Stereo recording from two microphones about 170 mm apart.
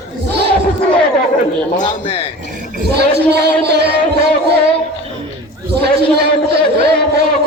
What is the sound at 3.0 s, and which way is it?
Speech, 75° right (ahead or behind).